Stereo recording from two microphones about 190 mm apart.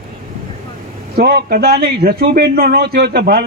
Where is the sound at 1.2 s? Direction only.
55° right (ahead or behind).